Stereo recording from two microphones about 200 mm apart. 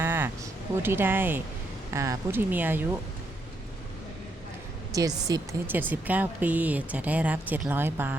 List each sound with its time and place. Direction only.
0.0 s a sound: 10° right (ahead or behind)
0.8 s speech: 10° right (ahead or behind)
4.9 s speech: 15° right (ahead or behind)